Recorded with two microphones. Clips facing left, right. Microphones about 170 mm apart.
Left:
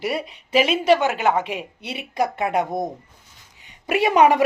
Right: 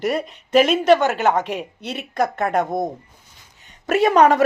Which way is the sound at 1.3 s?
5° left (ahead or behind).